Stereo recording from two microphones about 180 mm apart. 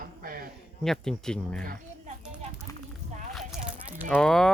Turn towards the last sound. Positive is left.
turn(degrees=0)  # may be behind; listen again after turning